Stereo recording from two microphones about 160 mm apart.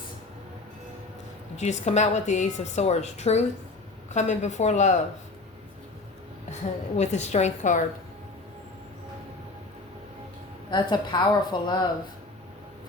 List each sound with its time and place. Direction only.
1.5 s a woman's voice: 45° left (ahead or behind)
6.5 s a woman's voice: 45° left (ahead or behind)
10.7 s a woman's voice: 30° left (ahead or behind)